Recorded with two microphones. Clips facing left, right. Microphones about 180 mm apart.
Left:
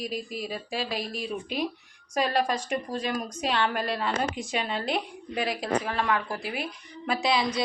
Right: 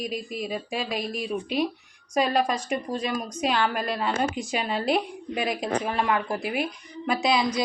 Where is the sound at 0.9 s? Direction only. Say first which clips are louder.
Right 3 dB; 45° right (ahead or behind).